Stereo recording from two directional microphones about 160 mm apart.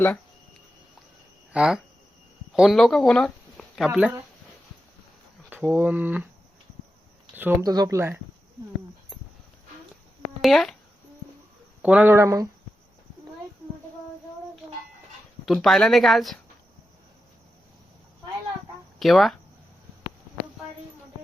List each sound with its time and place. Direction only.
1.5 s speech: 5° right (ahead or behind)
3.8 s speech: 10° right (ahead or behind)
5.6 s speech: 15° right (ahead or behind)
7.3 s speech: 10° right (ahead or behind)
7.7 s speech: 20° right (ahead or behind)
10.4 s speech: centre (ahead or behind)
11.8 s speech: 10° right (ahead or behind)
15.4 s speech: centre (ahead or behind)
18.9 s speech: centre (ahead or behind)